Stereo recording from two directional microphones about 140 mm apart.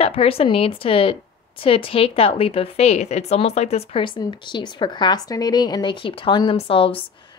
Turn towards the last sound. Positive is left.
turn(degrees=40)  # may be behind; listen again after turning